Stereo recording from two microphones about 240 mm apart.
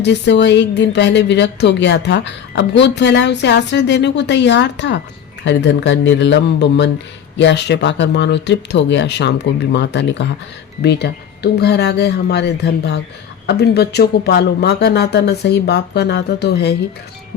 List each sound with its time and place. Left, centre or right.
0.0 s speech: left
11.5 s speech: left